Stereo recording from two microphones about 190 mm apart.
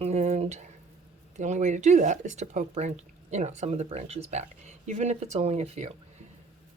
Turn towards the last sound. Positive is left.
turn(degrees=-30)  # may be behind; listen again after turning